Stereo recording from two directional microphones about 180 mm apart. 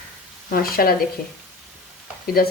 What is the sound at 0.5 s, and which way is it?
Speech, 55° left (ahead or behind).